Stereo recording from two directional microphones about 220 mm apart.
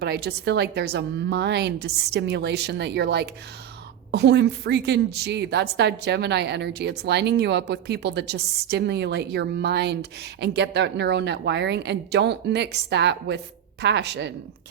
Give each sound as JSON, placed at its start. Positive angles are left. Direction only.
{"t": 0.0, "sound": "a woman's voice", "side_deg": -50}